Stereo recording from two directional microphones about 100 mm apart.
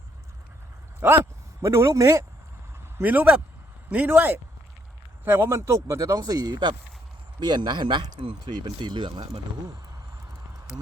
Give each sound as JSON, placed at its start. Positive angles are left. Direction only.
{"t": 0.9, "sound": "speech", "side_deg": -25}
{"t": 3.0, "sound": "speech", "side_deg": -15}